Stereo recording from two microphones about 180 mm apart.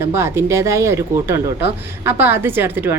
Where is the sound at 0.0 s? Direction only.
15° right (ahead or behind).